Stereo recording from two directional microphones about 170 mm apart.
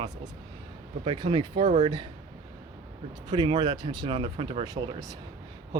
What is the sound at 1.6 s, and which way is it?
Speech, 45° right (ahead or behind).